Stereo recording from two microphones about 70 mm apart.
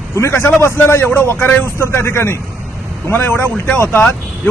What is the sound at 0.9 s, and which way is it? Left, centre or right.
Speech, left.